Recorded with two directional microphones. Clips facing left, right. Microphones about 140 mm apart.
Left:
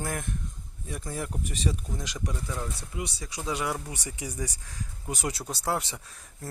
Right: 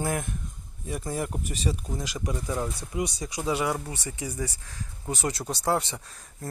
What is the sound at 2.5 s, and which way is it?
Speech, 30° right (ahead or behind).